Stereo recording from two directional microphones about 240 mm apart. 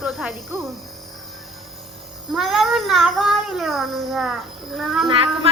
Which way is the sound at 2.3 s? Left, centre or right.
Centre.